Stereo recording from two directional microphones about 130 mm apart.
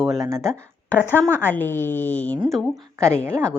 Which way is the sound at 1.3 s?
15° left (ahead or behind).